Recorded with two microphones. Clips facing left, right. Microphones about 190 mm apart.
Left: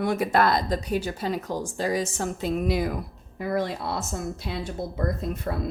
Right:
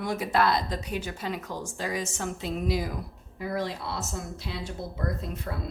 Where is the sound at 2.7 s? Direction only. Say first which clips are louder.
Left 4 dB; 60° left (ahead or behind).